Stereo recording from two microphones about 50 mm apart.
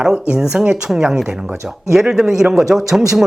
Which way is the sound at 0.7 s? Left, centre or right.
Centre.